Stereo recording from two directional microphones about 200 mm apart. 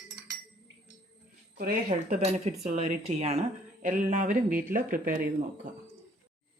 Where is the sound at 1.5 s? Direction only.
40° right (ahead or behind).